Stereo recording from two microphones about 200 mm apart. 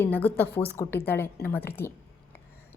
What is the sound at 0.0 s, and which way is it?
A woman's voice, 10° left (ahead or behind).